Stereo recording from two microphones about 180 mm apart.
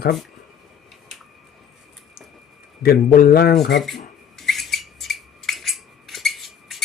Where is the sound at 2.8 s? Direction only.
55° left (ahead or behind).